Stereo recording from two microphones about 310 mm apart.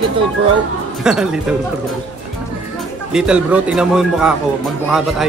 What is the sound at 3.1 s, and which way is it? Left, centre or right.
Speech, centre.